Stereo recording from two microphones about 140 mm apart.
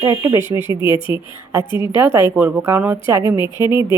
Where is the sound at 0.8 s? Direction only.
35° left (ahead or behind).